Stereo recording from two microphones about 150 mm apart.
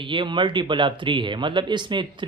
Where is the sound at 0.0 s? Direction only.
35° right (ahead or behind).